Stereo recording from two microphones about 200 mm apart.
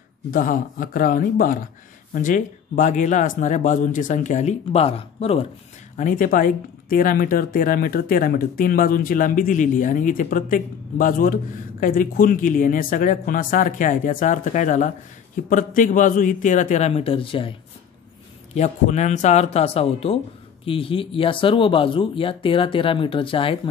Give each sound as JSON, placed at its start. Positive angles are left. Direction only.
{"t": 0.3, "sound": "speech", "side_deg": 45}
{"t": 5.9, "sound": "speech", "side_deg": 40}